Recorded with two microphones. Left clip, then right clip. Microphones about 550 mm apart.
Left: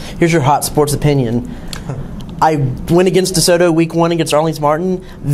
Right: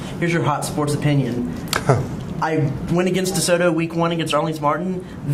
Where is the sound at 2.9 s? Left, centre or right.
Left.